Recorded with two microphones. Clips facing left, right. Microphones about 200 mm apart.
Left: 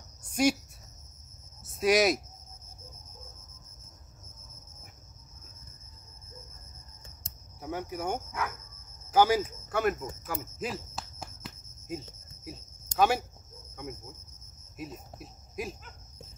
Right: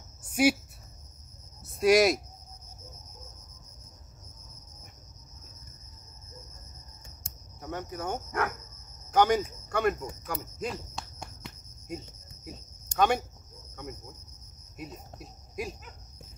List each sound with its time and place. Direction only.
0.3 s a sound: 5° right (ahead or behind)
1.6 s cricket: centre (ahead or behind)
7.6 s cricket: 10° left (ahead or behind)
8.3 s speech: 60° right (ahead or behind)
9.1 s speech: 5° left (ahead or behind)
10.2 s a sound: 5° left (ahead or behind)
14.8 s speech: centre (ahead or behind)